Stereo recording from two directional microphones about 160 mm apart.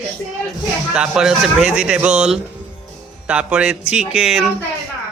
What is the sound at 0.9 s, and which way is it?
A man's voice, 5° right (ahead or behind).